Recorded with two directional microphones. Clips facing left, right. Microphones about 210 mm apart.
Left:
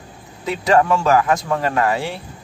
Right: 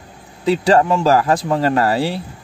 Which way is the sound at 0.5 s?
30° right (ahead or behind).